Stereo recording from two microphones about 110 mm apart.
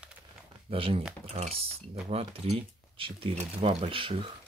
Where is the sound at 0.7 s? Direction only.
55° right (ahead or behind).